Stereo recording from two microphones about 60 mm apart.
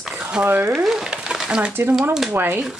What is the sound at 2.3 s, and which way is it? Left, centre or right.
Speech, right.